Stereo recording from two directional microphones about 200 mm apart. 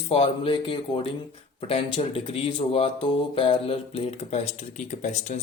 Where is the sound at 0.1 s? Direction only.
25° left (ahead or behind).